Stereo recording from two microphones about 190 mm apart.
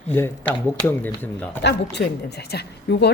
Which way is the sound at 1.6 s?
65° left (ahead or behind).